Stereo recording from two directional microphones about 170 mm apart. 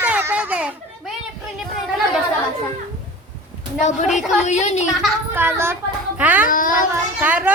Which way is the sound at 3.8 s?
45° left (ahead or behind).